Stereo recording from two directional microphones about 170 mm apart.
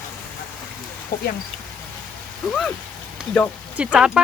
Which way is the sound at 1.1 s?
60° left (ahead or behind).